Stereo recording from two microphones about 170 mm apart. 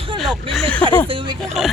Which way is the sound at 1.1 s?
30° right (ahead or behind).